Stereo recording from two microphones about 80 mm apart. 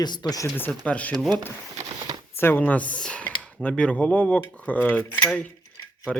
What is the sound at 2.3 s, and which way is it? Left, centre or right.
Speech, left.